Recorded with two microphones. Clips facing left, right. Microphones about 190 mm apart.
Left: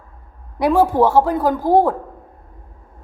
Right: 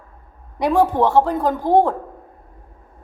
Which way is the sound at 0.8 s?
10° left (ahead or behind).